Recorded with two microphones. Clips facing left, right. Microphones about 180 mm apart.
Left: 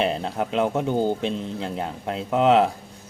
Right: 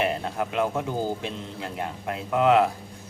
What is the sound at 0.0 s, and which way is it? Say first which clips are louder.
Speech: left 2 dB; 25° left (ahead or behind).